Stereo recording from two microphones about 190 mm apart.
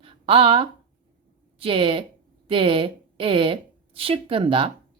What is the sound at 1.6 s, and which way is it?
A woman's voice, 30° right (ahead or behind).